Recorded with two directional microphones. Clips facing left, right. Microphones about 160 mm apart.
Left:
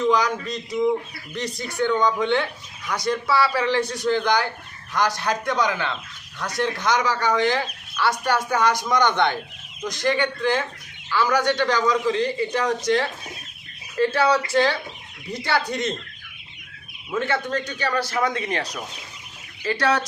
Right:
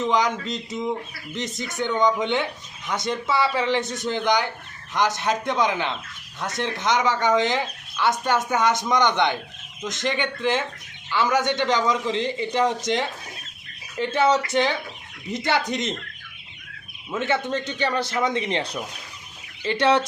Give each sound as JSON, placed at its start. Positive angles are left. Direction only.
{"t": 0.1, "sound": "speech", "side_deg": -20}
{"t": 17.1, "sound": "speech", "side_deg": -20}